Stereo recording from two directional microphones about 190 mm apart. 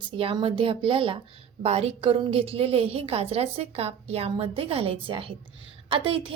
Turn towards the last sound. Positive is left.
turn(degrees=-25)  # may be behind; listen again after turning